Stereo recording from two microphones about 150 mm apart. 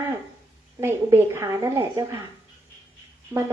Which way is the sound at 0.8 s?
15° right (ahead or behind).